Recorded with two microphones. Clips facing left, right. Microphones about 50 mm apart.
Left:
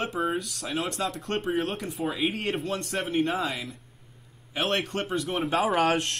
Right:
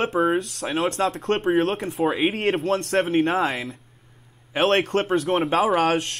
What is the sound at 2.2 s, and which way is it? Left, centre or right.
Speech, right.